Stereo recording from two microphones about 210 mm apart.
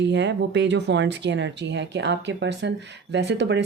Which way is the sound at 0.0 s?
55° right (ahead or behind).